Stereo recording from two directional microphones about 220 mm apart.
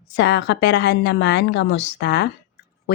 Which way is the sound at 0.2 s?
50° left (ahead or behind).